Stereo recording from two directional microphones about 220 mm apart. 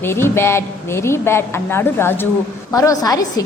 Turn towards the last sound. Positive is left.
turn(degrees=15)  # may be behind; listen again after turning